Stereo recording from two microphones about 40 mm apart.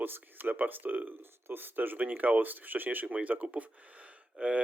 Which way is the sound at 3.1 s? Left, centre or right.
Right.